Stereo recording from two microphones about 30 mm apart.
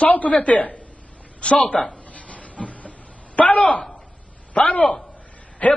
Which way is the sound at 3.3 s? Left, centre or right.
Left.